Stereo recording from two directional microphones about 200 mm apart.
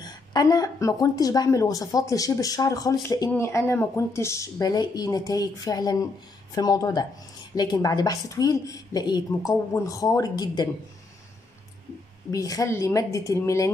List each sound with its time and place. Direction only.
0.0 s a woman's voice: 20° left (ahead or behind)
12.3 s a woman's voice: 15° left (ahead or behind)